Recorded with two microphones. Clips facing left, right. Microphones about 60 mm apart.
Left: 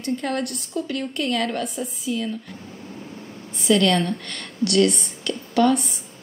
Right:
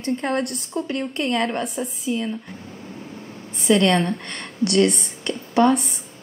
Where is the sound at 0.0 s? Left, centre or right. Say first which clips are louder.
Right 2 dB; right.